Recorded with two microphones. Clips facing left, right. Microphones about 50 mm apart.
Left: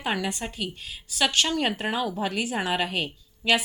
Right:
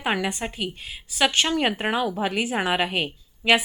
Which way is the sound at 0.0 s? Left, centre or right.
Right.